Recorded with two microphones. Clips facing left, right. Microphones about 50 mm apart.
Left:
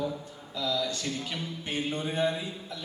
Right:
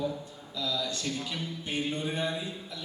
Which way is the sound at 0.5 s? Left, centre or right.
Left.